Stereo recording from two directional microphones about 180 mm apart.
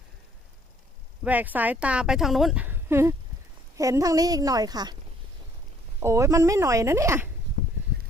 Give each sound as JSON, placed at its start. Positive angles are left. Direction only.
{"t": 1.2, "sound": "a woman's voice", "side_deg": -10}
{"t": 6.0, "sound": "speech", "side_deg": -15}